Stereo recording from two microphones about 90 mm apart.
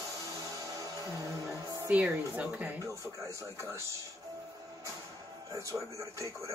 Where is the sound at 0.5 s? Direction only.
40° right (ahead or behind).